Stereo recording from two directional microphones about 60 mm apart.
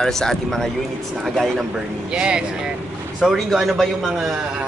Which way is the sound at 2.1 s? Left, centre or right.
Centre.